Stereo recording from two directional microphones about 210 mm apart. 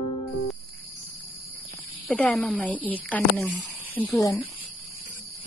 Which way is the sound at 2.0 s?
5° left (ahead or behind).